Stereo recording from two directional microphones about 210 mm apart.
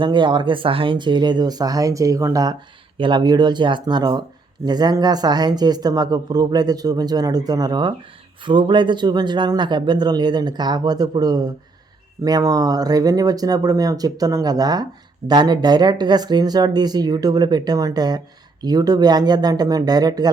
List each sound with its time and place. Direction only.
0.0 s speech: 20° right (ahead or behind)